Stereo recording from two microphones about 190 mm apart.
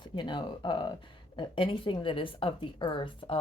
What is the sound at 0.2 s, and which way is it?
A woman's voice, 25° left (ahead or behind).